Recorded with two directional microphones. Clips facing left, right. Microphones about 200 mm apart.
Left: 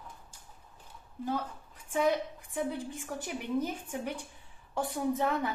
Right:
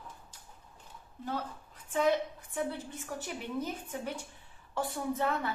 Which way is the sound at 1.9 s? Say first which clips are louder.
Even; 10° left (ahead or behind).